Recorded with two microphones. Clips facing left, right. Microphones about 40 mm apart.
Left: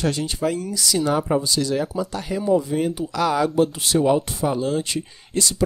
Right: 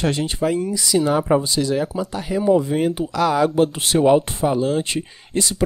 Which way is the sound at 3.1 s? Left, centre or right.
Centre.